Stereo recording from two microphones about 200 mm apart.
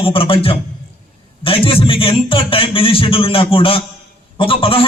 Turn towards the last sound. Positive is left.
turn(degrees=25)  # may be behind; listen again after turning